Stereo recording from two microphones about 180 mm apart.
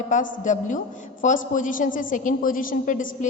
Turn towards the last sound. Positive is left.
turn(degrees=45)  # may be behind; listen again after turning